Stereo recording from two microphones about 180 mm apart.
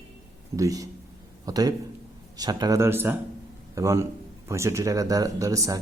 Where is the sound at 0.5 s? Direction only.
20° right (ahead or behind).